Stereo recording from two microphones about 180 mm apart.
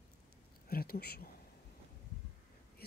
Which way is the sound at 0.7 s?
55° left (ahead or behind).